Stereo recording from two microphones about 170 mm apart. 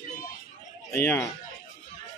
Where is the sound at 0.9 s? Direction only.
15° left (ahead or behind).